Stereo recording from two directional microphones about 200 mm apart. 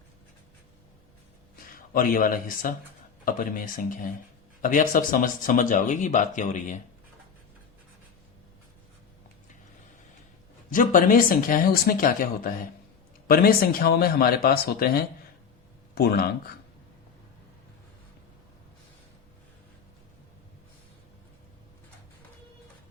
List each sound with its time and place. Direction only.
1.7 s speech: 45° left (ahead or behind)
10.7 s speech: 45° left (ahead or behind)